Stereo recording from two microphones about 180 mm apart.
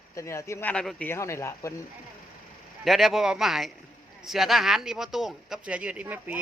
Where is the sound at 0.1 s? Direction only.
15° left (ahead or behind).